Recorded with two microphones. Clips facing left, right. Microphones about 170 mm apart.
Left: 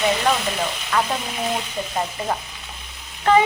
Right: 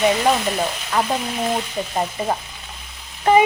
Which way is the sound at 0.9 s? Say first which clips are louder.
Right 1 dB; 15° right (ahead or behind).